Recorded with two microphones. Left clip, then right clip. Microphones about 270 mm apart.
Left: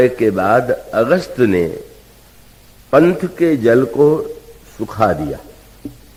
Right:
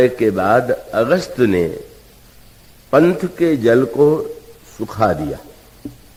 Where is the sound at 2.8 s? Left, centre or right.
Left.